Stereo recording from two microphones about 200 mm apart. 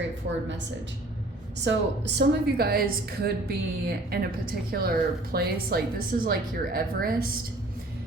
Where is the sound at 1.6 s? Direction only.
60° right (ahead or behind).